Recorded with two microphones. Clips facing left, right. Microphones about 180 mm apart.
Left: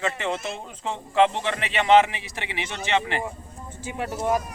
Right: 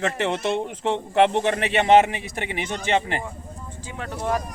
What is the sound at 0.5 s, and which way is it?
Speech, 70° right (ahead or behind).